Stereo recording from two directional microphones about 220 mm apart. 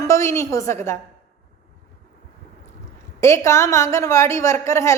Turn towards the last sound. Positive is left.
turn(degrees=15)  # may be behind; listen again after turning